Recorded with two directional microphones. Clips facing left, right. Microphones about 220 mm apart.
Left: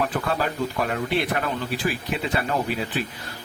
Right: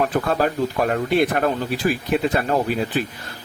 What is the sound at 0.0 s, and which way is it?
Speech, 45° right (ahead or behind).